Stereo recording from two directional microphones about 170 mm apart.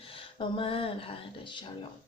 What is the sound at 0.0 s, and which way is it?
Speech, 30° left (ahead or behind).